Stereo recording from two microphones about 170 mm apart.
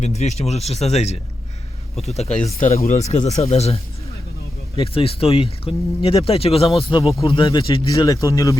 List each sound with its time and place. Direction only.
0.0 s speech: 40° left (ahead or behind)
4.8 s speech: 35° left (ahead or behind)